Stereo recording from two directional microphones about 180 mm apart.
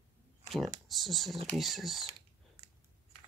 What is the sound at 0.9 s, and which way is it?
Speech, centre (ahead or behind).